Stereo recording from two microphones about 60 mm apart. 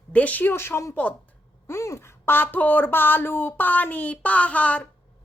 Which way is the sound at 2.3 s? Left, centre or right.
Left.